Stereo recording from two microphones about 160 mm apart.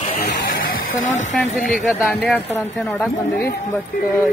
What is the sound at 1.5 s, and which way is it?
Speech, centre (ahead or behind).